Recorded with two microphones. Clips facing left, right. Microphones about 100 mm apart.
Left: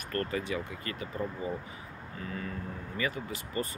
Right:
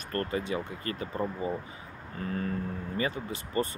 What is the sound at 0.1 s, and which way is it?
Speech, 30° right (ahead or behind).